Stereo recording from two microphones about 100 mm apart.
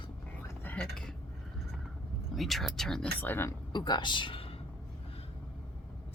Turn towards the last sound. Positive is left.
turn(degrees=60)  # may be behind; listen again after turning